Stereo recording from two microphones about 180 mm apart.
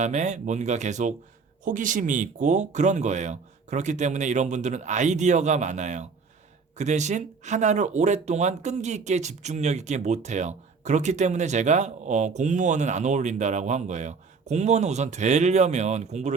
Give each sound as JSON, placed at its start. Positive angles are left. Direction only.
{"t": 0.0, "sound": "speech", "side_deg": -40}